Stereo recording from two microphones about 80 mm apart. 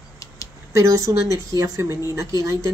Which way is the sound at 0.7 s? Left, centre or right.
Right.